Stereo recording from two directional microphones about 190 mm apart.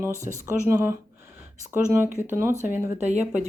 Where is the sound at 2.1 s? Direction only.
40° right (ahead or behind).